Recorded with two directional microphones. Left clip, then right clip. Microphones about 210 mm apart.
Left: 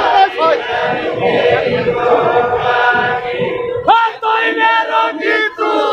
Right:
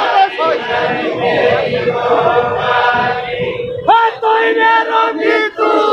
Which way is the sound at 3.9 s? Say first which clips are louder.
Right 1 dB; 50° left (ahead or behind).